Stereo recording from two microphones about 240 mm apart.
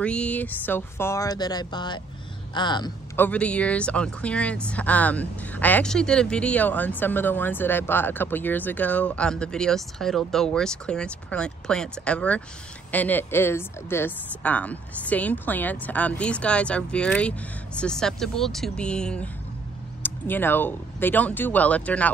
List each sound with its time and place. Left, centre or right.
0.0 s speech: centre
2.5 s a sound: centre
3.3 s speech: centre